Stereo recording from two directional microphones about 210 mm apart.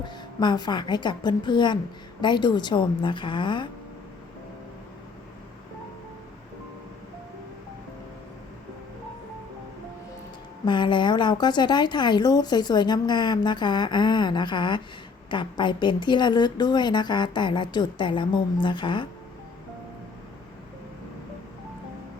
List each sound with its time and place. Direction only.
0.0 s speech: 20° left (ahead or behind)
10.7 s speech: 20° left (ahead or behind)